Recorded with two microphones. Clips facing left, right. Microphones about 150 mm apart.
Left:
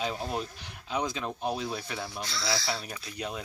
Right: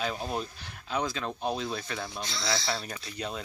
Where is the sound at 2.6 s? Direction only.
10° left (ahead or behind).